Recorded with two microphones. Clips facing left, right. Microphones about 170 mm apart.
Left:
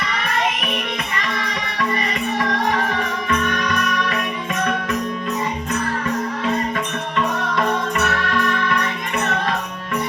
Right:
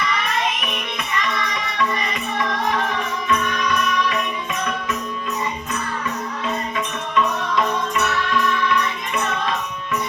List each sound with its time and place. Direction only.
3.2 s music: 55° left (ahead or behind)
7.2 s music: 55° left (ahead or behind)